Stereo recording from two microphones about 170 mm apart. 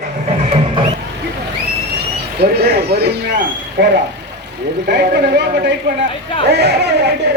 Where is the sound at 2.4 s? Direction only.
70° right (ahead or behind).